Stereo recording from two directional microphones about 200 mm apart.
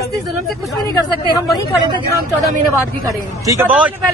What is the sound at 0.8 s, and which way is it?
Speech, 20° left (ahead or behind).